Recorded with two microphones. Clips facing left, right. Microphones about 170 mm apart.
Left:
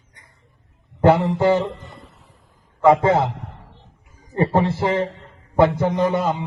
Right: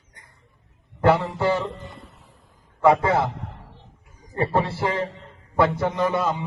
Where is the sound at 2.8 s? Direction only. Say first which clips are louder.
Left 3 dB; 20° left (ahead or behind).